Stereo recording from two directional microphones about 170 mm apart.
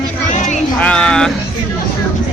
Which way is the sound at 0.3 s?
45° left (ahead or behind).